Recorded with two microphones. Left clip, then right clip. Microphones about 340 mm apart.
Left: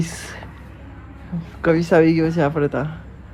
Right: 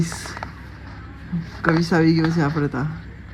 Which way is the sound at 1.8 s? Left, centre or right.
Centre.